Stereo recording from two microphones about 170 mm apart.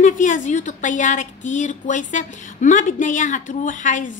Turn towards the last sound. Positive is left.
turn(degrees=50)  # may be behind; listen again after turning